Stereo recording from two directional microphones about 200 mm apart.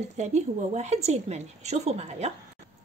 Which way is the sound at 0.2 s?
35° right (ahead or behind).